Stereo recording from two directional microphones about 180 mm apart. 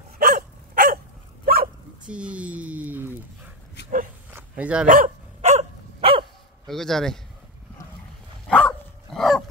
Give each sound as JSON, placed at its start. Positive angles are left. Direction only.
{"t": 0.2, "sound": "dog", "side_deg": -55}
{"t": 2.0, "sound": "dog", "side_deg": -5}
{"t": 4.8, "sound": "dog", "side_deg": -45}
{"t": 6.7, "sound": "speech", "side_deg": 0}
{"t": 8.5, "sound": "dog", "side_deg": 5}